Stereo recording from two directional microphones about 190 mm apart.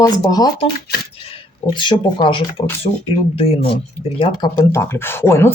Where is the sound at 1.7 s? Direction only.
25° left (ahead or behind).